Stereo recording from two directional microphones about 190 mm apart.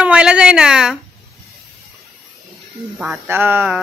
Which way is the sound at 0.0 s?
5° right (ahead or behind).